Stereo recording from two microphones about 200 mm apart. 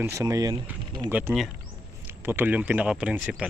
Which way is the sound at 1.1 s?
10° right (ahead or behind).